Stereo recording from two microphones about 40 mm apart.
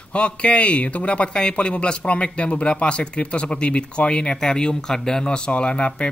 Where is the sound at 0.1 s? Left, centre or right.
Left.